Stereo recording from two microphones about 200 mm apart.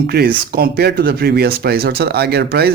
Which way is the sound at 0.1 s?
50° right (ahead or behind).